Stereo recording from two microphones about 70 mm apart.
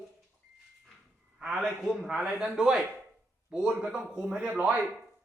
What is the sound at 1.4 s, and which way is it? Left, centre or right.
A man's voice, centre.